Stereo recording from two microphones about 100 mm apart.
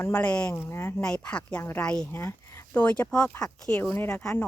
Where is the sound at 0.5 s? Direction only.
25° left (ahead or behind).